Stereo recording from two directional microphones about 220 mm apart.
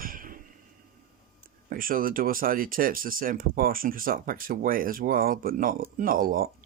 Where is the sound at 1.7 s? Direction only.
40° right (ahead or behind).